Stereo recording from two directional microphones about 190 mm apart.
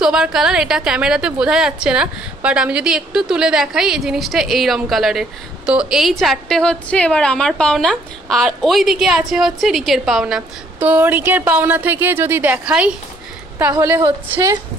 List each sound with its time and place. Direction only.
0.0 s a woman's voice: 5° right (ahead or behind)